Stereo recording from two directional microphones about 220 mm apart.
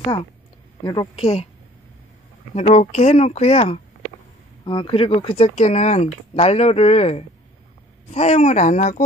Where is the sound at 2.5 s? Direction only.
30° left (ahead or behind).